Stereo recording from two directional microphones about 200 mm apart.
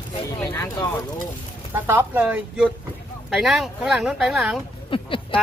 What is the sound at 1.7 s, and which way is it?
Speech, 10° right (ahead or behind).